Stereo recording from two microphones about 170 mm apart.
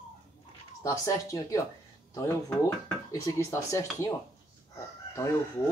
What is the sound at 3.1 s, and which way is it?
Speech, 20° left (ahead or behind).